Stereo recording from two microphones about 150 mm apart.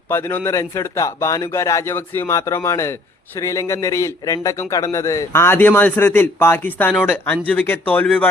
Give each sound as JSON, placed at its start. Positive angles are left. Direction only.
{"t": 0.1, "sound": "a man's voice", "side_deg": 15}